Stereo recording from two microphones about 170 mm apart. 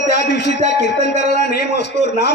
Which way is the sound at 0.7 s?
90° left.